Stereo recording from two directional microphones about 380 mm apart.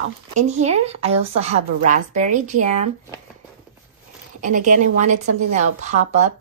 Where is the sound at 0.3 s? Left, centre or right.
Centre.